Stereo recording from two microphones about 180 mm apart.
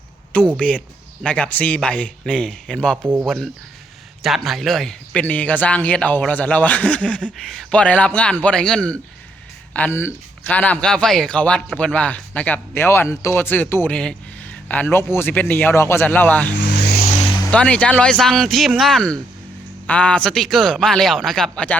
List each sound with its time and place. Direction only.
0.3 s speech: 5° left (ahead or behind)
3.0 s speech: 10° right (ahead or behind)
3.2 s speech: centre (ahead or behind)
16.6 s vehicle: 70° left (ahead or behind)
17.5 s speech: 5° left (ahead or behind)